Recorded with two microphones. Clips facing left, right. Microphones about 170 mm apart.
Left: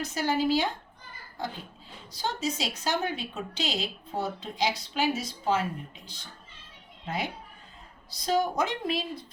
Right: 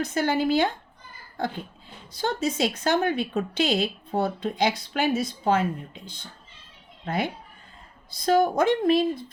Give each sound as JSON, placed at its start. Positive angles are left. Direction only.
{"t": 0.0, "sound": "a woman's voice", "side_deg": -55}
{"t": 2.1, "sound": "a woman's voice", "side_deg": -55}